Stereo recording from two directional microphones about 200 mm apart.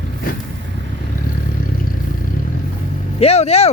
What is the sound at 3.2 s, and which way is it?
Speech, 30° left (ahead or behind).